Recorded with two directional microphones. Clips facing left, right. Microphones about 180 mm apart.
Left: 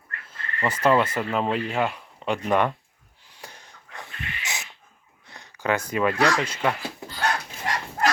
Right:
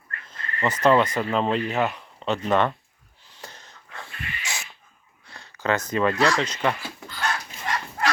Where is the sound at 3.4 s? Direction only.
10° left (ahead or behind).